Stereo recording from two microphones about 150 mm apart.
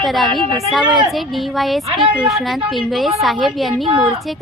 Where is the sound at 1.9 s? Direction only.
30° right (ahead or behind).